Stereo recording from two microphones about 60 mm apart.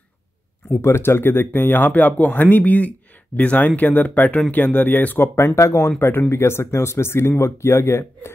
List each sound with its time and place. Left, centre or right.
0.7 s speech: left
5.3 s speech: left
5.6 s speech: left
5.9 s speech: left